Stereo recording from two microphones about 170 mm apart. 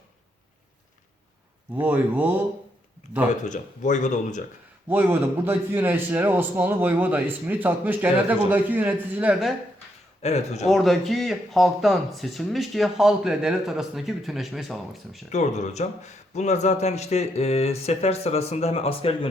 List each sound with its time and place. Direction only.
1.7 s a man's voice: 10° right (ahead or behind)
3.5 s speech: 45° left (ahead or behind)
4.9 s a man's voice: 10° right (ahead or behind)
10.2 s speech: 40° left (ahead or behind)
10.7 s a man's voice: centre (ahead or behind)
15.3 s speech: 45° left (ahead or behind)